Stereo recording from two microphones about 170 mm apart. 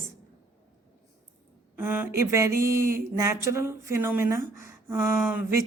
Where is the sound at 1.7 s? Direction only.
10° right (ahead or behind).